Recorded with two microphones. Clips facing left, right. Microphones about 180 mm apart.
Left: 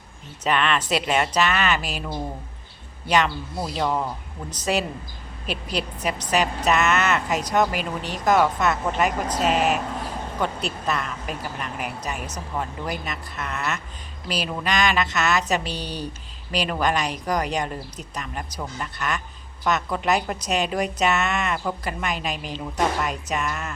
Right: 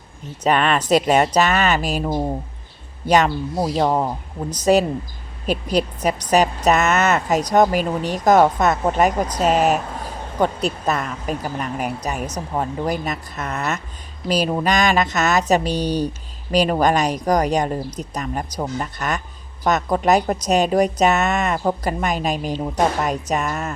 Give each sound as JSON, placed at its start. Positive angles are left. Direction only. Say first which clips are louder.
{"t": 0.4, "sound": "a woman's voice", "louder": "right 5 dB", "side_deg": -45}